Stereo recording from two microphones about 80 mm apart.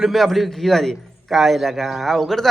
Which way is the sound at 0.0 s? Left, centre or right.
Centre.